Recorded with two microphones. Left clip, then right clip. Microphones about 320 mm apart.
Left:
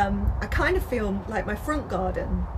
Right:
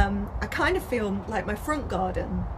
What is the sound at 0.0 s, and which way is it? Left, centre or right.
Speech, left.